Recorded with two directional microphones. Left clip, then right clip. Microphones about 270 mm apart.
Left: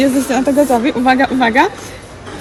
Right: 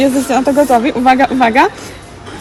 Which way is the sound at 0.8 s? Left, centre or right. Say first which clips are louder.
Right 2 dB; right.